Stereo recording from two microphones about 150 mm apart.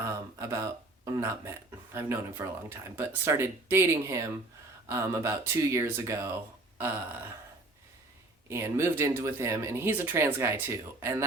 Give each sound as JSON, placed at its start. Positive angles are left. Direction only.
{"t": 0.0, "sound": "speech", "side_deg": -20}
{"t": 8.4, "sound": "speech", "side_deg": -15}